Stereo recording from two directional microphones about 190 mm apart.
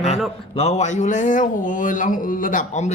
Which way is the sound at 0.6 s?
35° left (ahead or behind).